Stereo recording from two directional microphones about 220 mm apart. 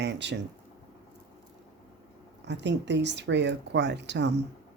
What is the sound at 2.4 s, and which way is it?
Speech, 50° right (ahead or behind).